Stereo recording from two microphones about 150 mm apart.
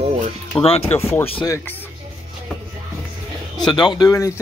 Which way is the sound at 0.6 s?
40° left (ahead or behind).